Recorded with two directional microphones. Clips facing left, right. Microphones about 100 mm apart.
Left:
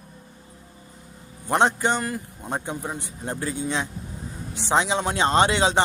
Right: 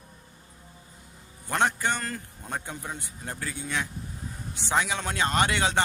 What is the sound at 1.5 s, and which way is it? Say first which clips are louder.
Speech: left 5 dB; 20° left (ahead or behind).